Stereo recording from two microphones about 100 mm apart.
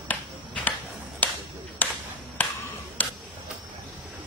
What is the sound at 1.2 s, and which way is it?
Clapping, 15° left (ahead or behind).